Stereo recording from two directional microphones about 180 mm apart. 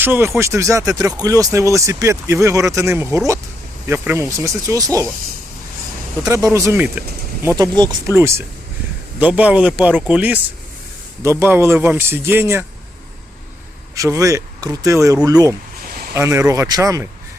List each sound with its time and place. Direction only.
0.0 s speech: 10° right (ahead or behind)
6.2 s speech: 20° right (ahead or behind)
7.4 s speech: 20° right (ahead or behind)
13.9 s speech: 20° right (ahead or behind)
15.8 s a sound: 55° right (ahead or behind)
16.1 s speech: 15° right (ahead or behind)